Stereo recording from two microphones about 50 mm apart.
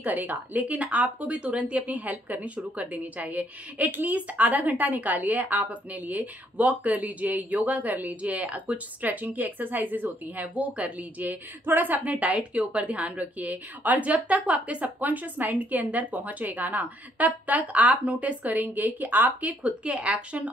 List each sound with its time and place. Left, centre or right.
0.0 s speech: right
19.6 s a woman's voice: right